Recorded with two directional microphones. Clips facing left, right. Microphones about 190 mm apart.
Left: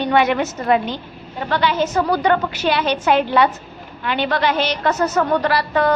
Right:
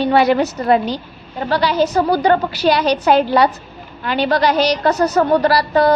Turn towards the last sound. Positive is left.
turn(degrees=-35)  # may be behind; listen again after turning